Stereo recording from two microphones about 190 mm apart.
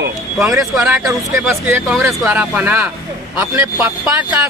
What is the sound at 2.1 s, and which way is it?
Speech, 5° right (ahead or behind).